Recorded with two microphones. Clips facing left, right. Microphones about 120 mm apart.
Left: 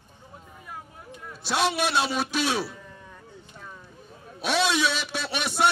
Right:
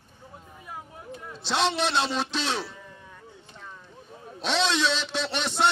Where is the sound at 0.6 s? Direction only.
10° right (ahead or behind).